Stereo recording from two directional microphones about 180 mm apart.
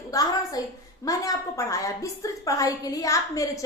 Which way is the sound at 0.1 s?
20° left (ahead or behind).